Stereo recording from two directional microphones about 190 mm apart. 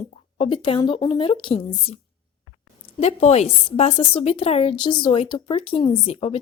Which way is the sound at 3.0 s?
35° left (ahead or behind).